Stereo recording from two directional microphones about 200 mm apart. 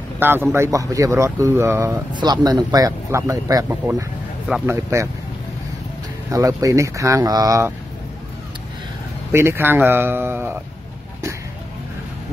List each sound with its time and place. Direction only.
0.2 s speech: 10° right (ahead or behind)
4.5 s speech: 5° right (ahead or behind)
6.3 s speech: 15° right (ahead or behind)
9.3 s speech: 10° right (ahead or behind)